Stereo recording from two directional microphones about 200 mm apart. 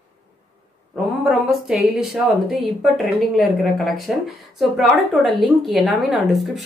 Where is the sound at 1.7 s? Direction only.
Centre (ahead or behind).